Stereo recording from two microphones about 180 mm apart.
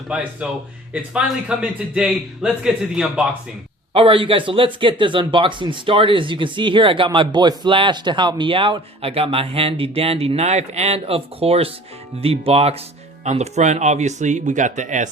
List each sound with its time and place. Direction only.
0.1 s a man's voice: 10° right (ahead or behind)
3.9 s speech: 30° right (ahead or behind)